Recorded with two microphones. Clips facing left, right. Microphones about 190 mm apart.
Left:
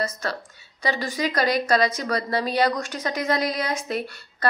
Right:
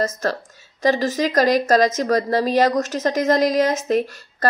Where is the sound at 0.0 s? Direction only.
45° right (ahead or behind).